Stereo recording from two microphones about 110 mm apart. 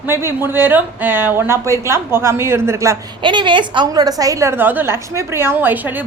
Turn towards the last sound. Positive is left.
turn(degrees=-15)  # may be behind; listen again after turning